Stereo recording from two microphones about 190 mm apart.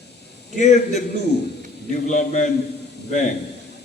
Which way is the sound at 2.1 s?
40° left (ahead or behind).